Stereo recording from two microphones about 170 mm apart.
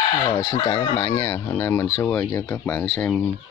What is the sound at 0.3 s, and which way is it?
Speech, 25° left (ahead or behind).